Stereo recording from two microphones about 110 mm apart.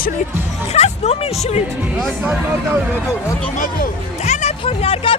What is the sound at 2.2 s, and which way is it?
Speech, 10° right (ahead or behind).